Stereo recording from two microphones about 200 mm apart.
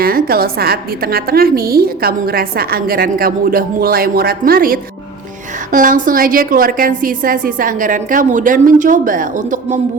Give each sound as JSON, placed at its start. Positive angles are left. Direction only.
{"t": 0.0, "sound": "a woman's voice", "side_deg": -45}